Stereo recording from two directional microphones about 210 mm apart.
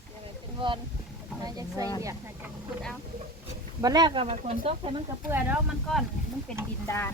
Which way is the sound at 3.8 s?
20° right (ahead or behind).